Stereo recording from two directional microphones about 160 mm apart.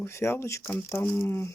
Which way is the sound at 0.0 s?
15° left (ahead or behind).